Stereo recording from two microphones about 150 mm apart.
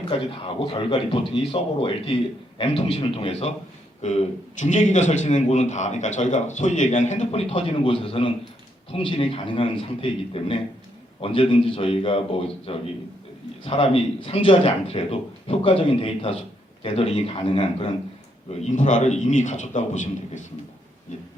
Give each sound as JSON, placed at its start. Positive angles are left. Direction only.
{"t": 0.1, "sound": "a man's voice", "side_deg": 35}
{"t": 4.6, "sound": "a man's voice", "side_deg": 55}
{"t": 18.6, "sound": "a man's voice", "side_deg": 55}